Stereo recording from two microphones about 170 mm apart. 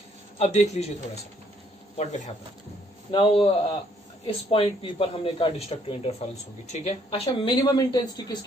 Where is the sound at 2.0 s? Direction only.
40° left (ahead or behind).